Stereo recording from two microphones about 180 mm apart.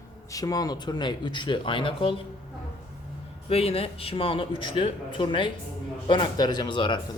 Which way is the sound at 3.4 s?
30° left (ahead or behind).